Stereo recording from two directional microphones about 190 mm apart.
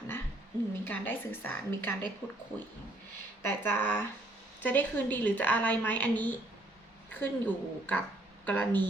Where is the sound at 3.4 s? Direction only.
10° left (ahead or behind).